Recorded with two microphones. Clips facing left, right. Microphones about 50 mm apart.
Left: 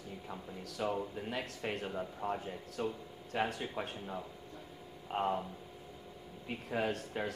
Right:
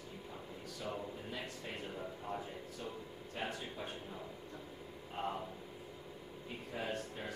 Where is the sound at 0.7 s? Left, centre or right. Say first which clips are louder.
Left 7 dB; left.